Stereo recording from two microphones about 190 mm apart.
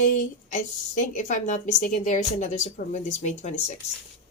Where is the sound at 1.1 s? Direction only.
40° left (ahead or behind).